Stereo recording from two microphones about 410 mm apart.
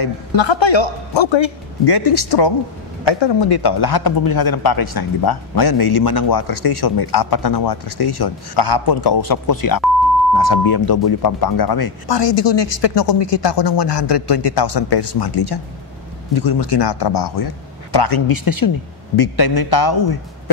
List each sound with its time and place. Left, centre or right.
0.0 s a man's voice: left
17.1 s speech: left
17.9 s speech: left
19.1 s speech: left